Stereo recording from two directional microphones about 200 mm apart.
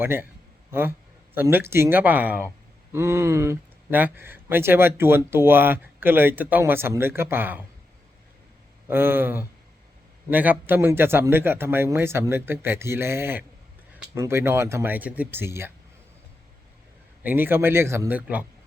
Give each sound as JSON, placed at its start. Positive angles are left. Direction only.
{"t": 0.0, "sound": "speech", "side_deg": -10}
{"t": 8.9, "sound": "speech", "side_deg": -10}
{"t": 17.2, "sound": "speech", "side_deg": -10}